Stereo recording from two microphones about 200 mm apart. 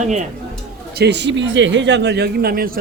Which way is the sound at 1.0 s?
60° right (ahead or behind).